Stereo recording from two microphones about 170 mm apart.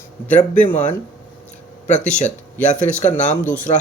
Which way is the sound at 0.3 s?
10° left (ahead or behind).